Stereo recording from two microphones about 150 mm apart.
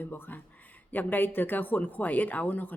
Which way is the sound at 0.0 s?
10° left (ahead or behind).